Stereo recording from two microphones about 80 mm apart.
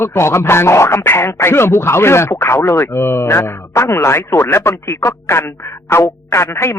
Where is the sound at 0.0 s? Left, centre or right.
Left.